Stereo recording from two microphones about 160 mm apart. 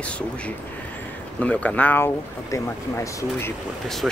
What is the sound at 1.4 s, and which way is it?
Speech, 10° left (ahead or behind).